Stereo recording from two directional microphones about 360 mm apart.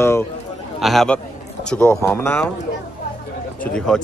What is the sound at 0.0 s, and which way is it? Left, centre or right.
A man's voice, centre.